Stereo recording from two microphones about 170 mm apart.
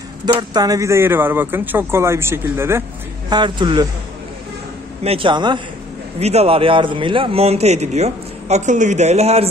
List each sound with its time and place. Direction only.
0.2 s speech: 25° right (ahead or behind)
3.3 s speech: 25° right (ahead or behind)
5.0 s speech: 30° right (ahead or behind)
6.1 s a man's voice: 40° right (ahead or behind)